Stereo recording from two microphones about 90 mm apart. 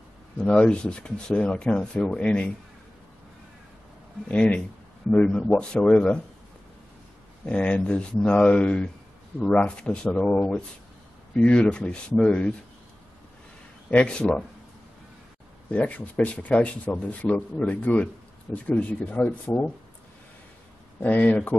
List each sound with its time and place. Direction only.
0.4 s speech: 10° left (ahead or behind)
4.3 s speech: 10° left (ahead or behind)
7.4 s speech: 10° left (ahead or behind)
13.8 s speech: 15° left (ahead or behind)
15.7 s speech: 15° left (ahead or behind)
21.0 s speech: 15° left (ahead or behind)